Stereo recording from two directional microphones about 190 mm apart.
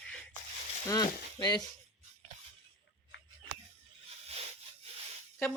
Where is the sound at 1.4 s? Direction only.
20° left (ahead or behind).